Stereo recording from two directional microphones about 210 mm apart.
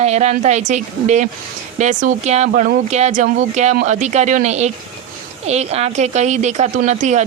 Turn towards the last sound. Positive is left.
turn(degrees=-35)  # may be behind; listen again after turning